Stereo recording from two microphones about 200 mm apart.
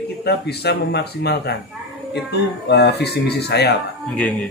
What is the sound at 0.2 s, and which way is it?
Speech, 55° left (ahead or behind).